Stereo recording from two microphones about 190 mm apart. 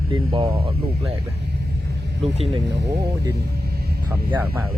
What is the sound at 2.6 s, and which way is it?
Speech, 65° right (ahead or behind).